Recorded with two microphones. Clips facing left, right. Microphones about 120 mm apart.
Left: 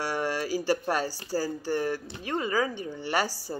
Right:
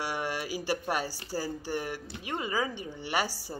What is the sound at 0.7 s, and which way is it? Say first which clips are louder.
Speech: left 2 dB; 15° right (ahead or behind).